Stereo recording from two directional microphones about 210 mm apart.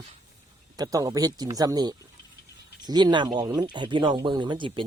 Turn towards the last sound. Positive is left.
turn(degrees=-25)  # may be behind; listen again after turning